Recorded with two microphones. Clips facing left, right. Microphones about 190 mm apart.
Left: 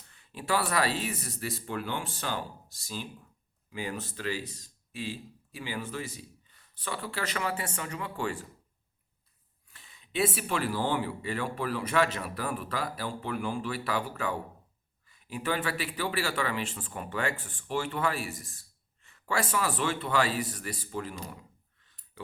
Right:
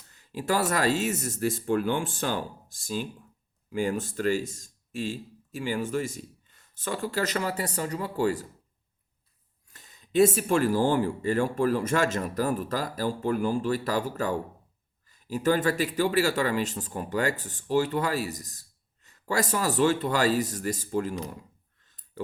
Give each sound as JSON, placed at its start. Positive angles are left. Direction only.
{"t": 0.1, "sound": "speech", "side_deg": -40}
{"t": 9.6, "sound": "speech", "side_deg": -40}